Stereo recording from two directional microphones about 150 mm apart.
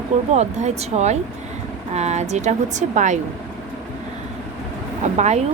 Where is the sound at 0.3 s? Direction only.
45° right (ahead or behind).